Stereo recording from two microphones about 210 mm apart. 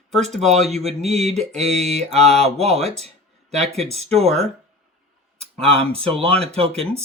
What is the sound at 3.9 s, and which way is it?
Mantra, 30° right (ahead or behind).